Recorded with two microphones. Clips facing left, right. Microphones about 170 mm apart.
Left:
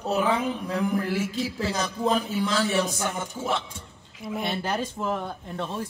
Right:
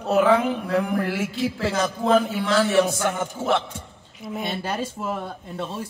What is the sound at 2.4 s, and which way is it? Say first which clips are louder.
A man's voice: right 5 dB; 70° right (ahead or behind).